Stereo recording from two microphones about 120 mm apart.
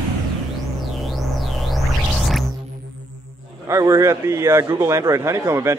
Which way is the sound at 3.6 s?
25° right (ahead or behind).